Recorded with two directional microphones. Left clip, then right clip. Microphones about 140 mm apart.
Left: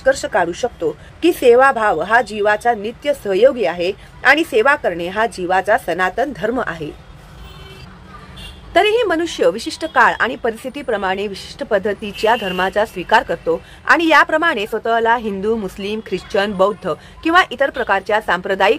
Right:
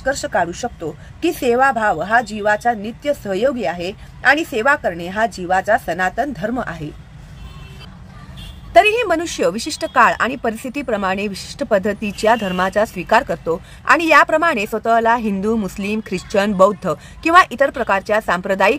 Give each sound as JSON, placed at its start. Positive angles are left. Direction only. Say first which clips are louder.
{"t": 0.0, "sound": "a woman's voice", "louder": "left 3 dB", "side_deg": -25}
{"t": 8.7, "sound": "speech", "louder": "right 1 dB", "side_deg": -40}